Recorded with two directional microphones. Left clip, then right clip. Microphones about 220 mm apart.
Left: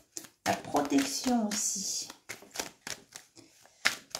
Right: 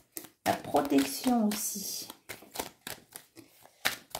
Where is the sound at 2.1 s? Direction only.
10° right (ahead or behind).